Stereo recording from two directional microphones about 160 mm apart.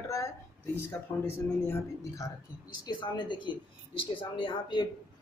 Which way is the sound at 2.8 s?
30° left (ahead or behind).